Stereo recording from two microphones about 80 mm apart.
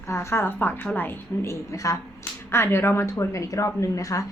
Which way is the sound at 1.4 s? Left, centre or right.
Left.